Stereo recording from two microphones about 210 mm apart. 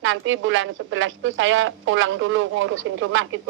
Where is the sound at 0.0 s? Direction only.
65° right (ahead or behind).